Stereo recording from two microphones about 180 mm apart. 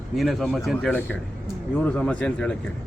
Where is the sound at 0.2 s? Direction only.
Centre (ahead or behind).